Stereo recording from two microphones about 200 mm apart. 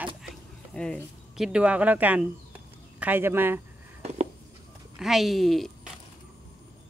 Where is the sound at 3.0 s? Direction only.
10° right (ahead or behind).